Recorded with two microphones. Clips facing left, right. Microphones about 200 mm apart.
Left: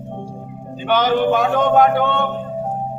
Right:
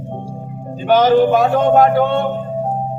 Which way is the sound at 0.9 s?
40° right (ahead or behind).